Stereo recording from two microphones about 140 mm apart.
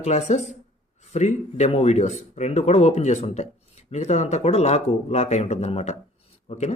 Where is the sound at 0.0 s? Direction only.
55° left (ahead or behind).